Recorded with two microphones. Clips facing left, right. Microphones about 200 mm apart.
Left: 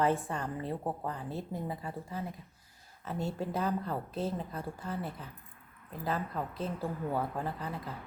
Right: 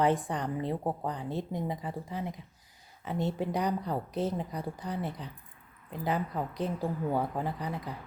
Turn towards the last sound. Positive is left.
turn(degrees=-15)  # may be behind; listen again after turning